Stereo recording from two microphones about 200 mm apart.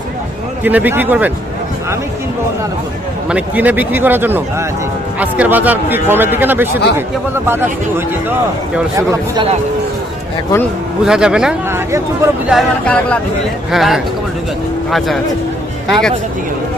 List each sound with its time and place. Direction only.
0.6 s a man's voice: 10° right (ahead or behind)
3.2 s a man's voice: 5° right (ahead or behind)
11.0 s a man's voice: 5° right (ahead or behind)
12.5 s speech: 5° left (ahead or behind)